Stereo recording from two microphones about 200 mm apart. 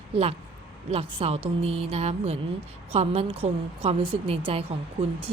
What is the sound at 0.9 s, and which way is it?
A woman's voice, 30° right (ahead or behind).